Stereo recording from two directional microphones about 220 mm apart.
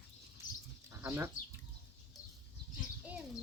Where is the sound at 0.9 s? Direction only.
10° right (ahead or behind).